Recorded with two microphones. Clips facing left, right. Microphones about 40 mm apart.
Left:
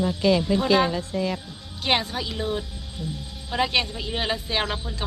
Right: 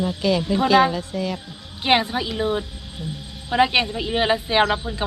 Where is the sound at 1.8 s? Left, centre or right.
Centre.